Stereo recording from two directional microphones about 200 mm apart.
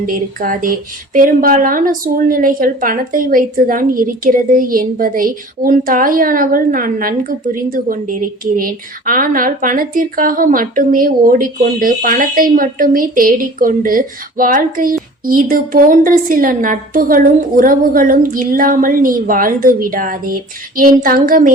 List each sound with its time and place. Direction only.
0.0 s speech: 45° right (ahead or behind)